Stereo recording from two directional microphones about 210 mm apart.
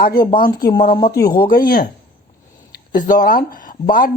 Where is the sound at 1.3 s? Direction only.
45° left (ahead or behind).